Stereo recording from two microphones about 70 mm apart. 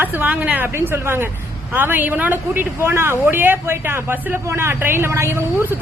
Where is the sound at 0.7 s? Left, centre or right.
Right.